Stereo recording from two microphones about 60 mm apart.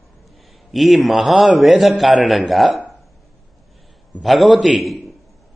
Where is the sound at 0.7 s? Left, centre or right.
Centre.